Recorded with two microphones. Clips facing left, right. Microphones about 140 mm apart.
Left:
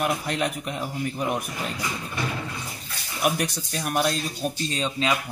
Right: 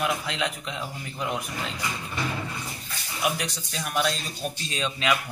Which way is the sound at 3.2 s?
50° left (ahead or behind).